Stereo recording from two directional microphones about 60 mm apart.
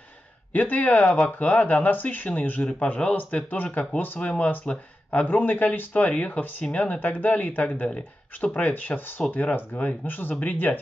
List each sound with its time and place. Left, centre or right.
0.5 s speech: left